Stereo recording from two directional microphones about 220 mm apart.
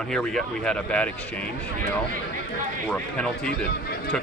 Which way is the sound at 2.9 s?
5° left (ahead or behind).